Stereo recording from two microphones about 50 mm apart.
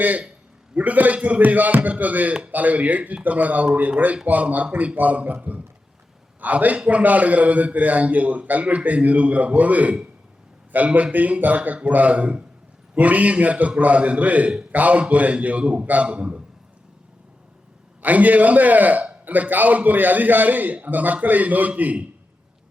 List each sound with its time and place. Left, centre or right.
0.0 s a man's voice: right
11.1 s a man's voice: right
18.0 s a man's voice: right